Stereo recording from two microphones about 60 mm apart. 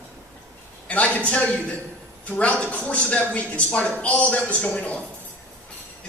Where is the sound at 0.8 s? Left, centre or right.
Left.